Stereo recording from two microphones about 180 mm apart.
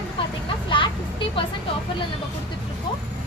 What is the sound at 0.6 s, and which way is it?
Speech, 25° left (ahead or behind).